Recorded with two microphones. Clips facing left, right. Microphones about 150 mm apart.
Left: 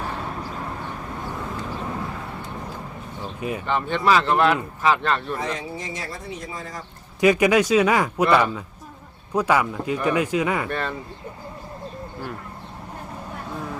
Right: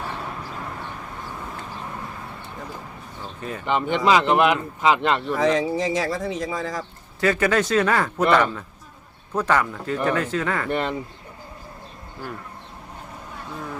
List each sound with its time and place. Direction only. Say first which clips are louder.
3.7 s speech: right 2 dB; 15° right (ahead or behind)
5.3 s speech: right 8 dB; 90° right
7.2 s speech: left 3 dB; 15° left (ahead or behind)
10.7 s speech: right 3 dB; 20° right (ahead or behind)